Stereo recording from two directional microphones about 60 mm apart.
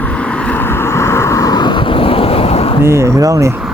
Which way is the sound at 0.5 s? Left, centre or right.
Left.